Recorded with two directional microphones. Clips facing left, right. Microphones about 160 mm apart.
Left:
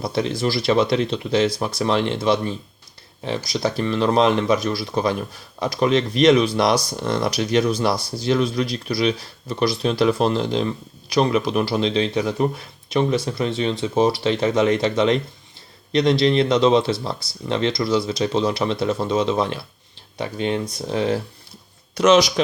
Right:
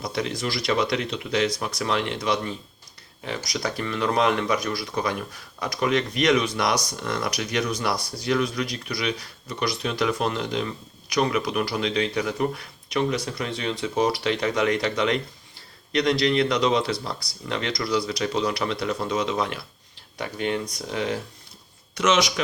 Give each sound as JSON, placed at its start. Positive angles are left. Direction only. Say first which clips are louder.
{"t": 0.0, "sound": "speech", "louder": "left 6 dB", "side_deg": 30}